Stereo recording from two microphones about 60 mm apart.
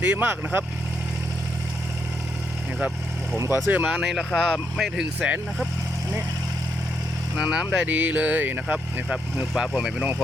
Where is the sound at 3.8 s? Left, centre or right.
Centre.